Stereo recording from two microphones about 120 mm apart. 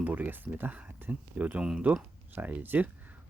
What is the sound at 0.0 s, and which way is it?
Speech, 15° right (ahead or behind).